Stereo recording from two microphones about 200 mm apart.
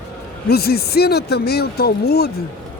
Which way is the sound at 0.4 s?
50° left (ahead or behind).